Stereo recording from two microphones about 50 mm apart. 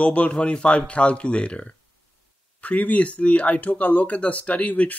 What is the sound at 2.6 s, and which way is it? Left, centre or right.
Speech, left.